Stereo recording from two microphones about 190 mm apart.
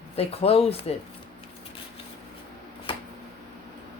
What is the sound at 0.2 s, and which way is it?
Speech, 30° left (ahead or behind).